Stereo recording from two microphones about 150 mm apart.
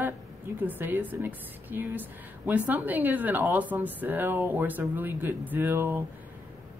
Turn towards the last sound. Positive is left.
turn(degrees=-15)  # may be behind; listen again after turning